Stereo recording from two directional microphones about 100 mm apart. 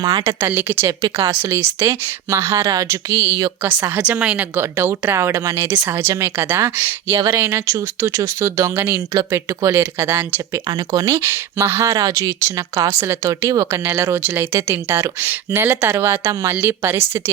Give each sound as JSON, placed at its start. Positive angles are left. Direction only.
{"t": 0.0, "sound": "speech", "side_deg": -50}
{"t": 0.3, "sound": "speech", "side_deg": -20}
{"t": 1.0, "sound": "speech", "side_deg": -40}
{"t": 1.4, "sound": "a woman's voice", "side_deg": -25}
{"t": 4.5, "sound": "speech", "side_deg": -25}
{"t": 5.6, "sound": "speech", "side_deg": -20}
{"t": 10.7, "sound": "speech", "side_deg": -40}
{"t": 11.9, "sound": "speech", "side_deg": -40}
{"t": 16.6, "sound": "speech", "side_deg": -20}